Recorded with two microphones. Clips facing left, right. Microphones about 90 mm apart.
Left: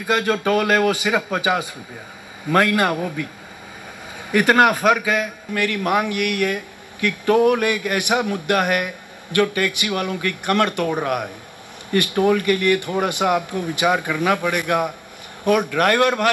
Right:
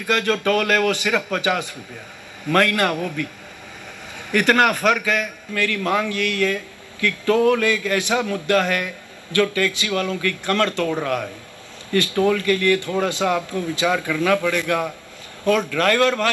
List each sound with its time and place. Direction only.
0.0 s a man's voice: 15° left (ahead or behind)
4.3 s a man's voice: 15° left (ahead or behind)
11.9 s a man's voice: 20° left (ahead or behind)